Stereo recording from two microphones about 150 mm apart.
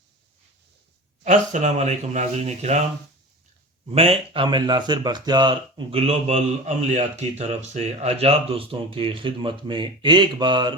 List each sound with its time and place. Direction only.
1.2 s speech: 55° right (ahead or behind)
3.8 s speech: 40° right (ahead or behind)
4.4 s speech: 30° right (ahead or behind)